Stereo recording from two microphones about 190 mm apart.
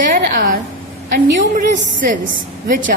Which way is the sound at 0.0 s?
45° right (ahead or behind).